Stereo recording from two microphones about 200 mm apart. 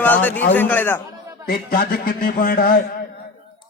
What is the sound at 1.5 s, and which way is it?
A man's voice, 45° left (ahead or behind).